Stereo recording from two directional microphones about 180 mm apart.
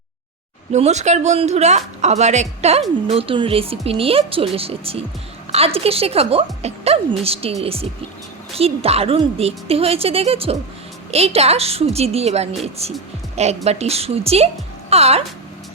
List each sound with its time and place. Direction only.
0.7 s speech: 40° right (ahead or behind)